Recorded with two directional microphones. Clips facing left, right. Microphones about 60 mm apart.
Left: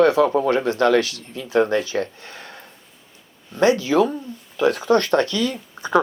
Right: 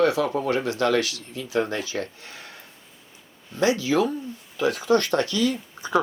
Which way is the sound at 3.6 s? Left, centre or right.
Left.